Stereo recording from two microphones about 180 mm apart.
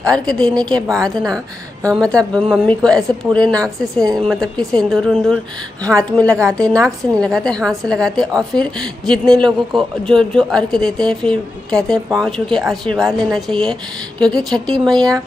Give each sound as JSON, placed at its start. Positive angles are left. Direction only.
{"t": 0.0, "sound": "speech", "side_deg": 5}